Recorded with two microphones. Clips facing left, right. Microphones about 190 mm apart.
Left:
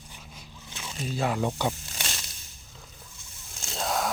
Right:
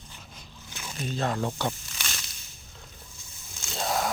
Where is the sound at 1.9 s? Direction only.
35° left (ahead or behind).